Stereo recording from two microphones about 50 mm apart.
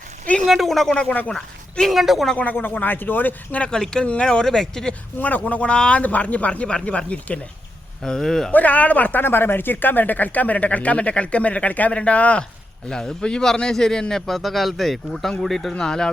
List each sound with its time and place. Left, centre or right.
0.4 s a man's voice: centre
0.9 s speech: left
1.9 s a man's voice: centre
2.4 s speech: left
3.6 s speech: centre
5.5 s speech: left
6.0 s speech: left
8.0 s speech: centre
8.5 s speech: left
9.2 s speech: left
12.9 s a man's voice: centre
15.8 s speech: centre